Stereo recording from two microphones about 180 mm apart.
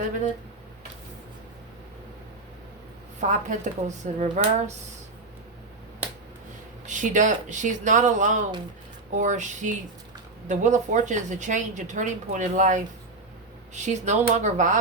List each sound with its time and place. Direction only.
3.2 s speech: 40° right (ahead or behind)
6.8 s a woman's voice: 45° right (ahead or behind)